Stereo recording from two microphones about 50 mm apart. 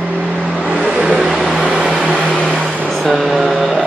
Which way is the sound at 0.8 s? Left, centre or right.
Centre.